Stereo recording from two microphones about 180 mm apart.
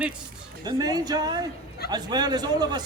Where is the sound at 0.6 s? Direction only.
20° right (ahead or behind).